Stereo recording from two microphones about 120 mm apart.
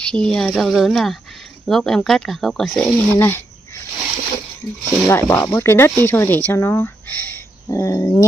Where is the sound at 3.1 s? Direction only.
15° left (ahead or behind).